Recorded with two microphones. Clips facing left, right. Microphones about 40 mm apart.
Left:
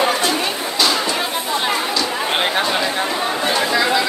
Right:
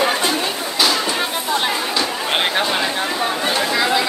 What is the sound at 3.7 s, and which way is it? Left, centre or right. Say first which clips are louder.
Chatter: even; centre.